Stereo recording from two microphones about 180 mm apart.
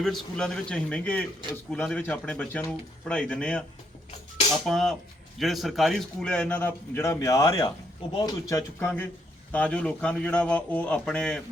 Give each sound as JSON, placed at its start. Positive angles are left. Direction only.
{"t": 0.0, "sound": "a man's voice", "side_deg": 5}
{"t": 4.6, "sound": "a man's voice", "side_deg": 0}